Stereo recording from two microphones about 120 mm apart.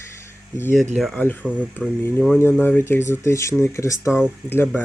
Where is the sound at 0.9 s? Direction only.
Centre (ahead or behind).